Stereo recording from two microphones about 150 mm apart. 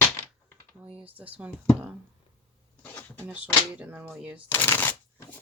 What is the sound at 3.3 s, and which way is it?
Speech, 10° right (ahead or behind).